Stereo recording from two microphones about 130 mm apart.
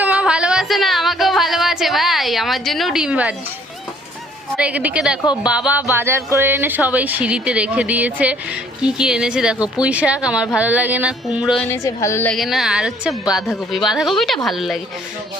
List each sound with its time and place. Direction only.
0.0 s music: 10° right (ahead or behind)
4.5 s speech: 10° right (ahead or behind)
5.2 s speech: 35° left (ahead or behind)
5.5 s speech: 10° right (ahead or behind)
11.7 s a woman's voice: 25° left (ahead or behind)
12.3 s a woman's voice: centre (ahead or behind)